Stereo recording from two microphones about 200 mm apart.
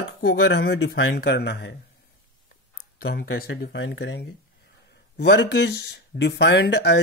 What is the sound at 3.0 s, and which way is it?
Speech, 50° left (ahead or behind).